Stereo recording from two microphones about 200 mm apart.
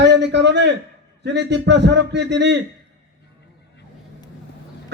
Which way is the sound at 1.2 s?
60° right (ahead or behind).